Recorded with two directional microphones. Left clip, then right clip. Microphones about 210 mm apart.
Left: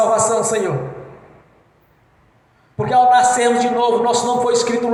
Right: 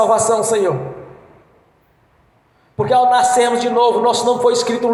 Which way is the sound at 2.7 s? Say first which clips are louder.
Even; 50° right (ahead or behind).